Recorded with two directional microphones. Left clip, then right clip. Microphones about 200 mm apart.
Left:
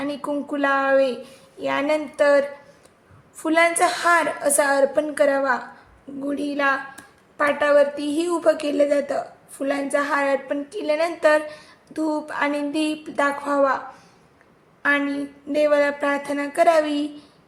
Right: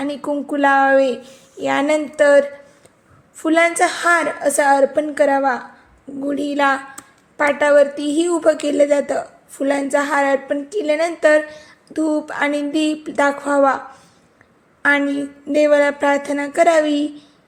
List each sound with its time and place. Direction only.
0.0 s a woman's voice: 25° right (ahead or behind)
14.8 s a woman's voice: 35° right (ahead or behind)